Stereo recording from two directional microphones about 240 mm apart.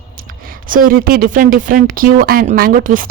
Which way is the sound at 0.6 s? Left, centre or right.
Right.